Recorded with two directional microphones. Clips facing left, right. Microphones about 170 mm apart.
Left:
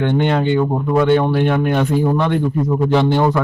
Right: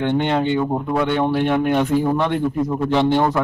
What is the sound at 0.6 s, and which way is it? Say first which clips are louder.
Speech: left 4 dB; 5° right (ahead or behind).